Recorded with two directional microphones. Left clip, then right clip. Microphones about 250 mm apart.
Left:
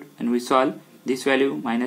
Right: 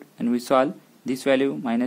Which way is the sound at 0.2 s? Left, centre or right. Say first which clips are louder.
Even; right.